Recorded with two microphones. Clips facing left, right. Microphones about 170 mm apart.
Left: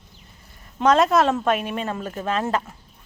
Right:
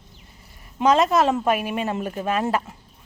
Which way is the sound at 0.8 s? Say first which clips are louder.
Left 1 dB; 5° right (ahead or behind).